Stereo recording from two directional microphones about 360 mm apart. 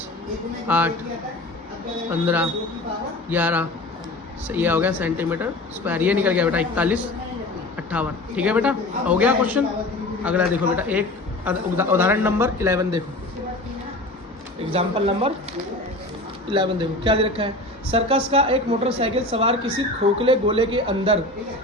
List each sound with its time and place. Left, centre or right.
0.7 s speech: centre
2.0 s speech: centre
14.7 s speech: centre
16.5 s speech: centre